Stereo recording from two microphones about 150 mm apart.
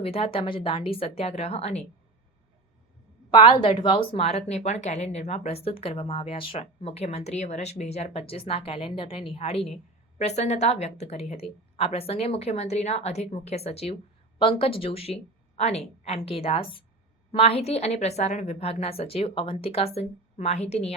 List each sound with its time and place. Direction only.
0.0 s a woman's voice: 40° left (ahead or behind)
3.3 s a woman's voice: 35° left (ahead or behind)